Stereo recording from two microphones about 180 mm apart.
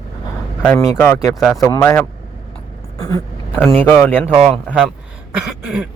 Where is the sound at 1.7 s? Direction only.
15° left (ahead or behind).